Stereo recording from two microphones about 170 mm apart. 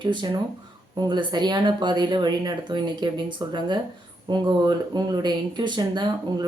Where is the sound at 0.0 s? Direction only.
25° right (ahead or behind).